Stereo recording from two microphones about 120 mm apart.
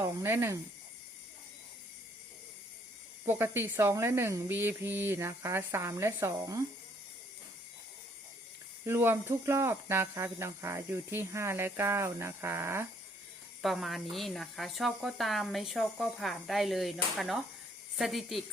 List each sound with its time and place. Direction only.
0.0 s speech: 20° right (ahead or behind)
3.2 s speech: 20° right (ahead or behind)
8.8 s speech: 20° right (ahead or behind)
13.6 s speech: centre (ahead or behind)